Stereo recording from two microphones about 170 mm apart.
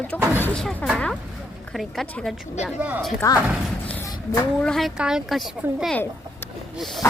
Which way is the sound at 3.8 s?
10° left (ahead or behind).